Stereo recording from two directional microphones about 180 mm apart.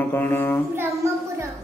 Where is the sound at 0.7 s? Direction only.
15° right (ahead or behind).